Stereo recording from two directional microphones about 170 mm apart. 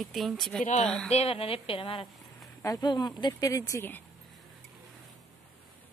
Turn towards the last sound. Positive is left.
turn(degrees=15)  # may be behind; listen again after turning